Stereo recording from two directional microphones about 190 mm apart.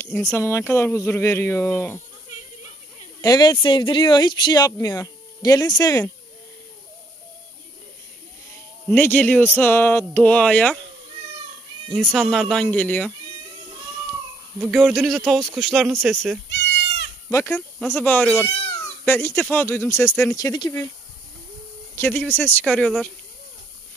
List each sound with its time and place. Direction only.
0.3 s speech: 10° left (ahead or behind)
3.2 s speech: 20° left (ahead or behind)
8.9 s speech: 10° left (ahead or behind)
11.9 s speech: 5° left (ahead or behind)
14.6 s speech: centre (ahead or behind)
16.4 s goat: 65° left (ahead or behind)
17.3 s speech: 15° left (ahead or behind)
21.9 s speech: 10° left (ahead or behind)